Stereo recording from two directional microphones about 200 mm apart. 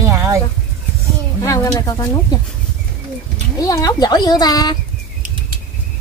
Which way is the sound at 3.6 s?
20° left (ahead or behind).